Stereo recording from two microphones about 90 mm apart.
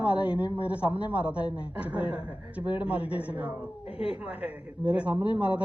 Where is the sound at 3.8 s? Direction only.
90° left.